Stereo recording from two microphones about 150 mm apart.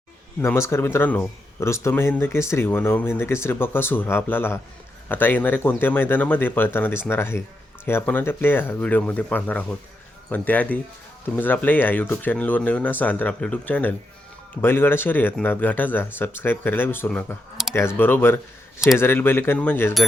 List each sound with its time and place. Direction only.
0.4 s speech: 15° left (ahead or behind)
17.7 s speech: 15° left (ahead or behind)